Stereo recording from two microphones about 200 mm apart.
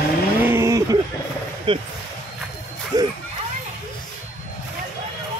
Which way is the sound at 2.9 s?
20° right (ahead or behind).